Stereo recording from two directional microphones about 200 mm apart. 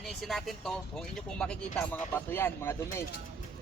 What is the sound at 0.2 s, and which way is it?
Speech, centre (ahead or behind).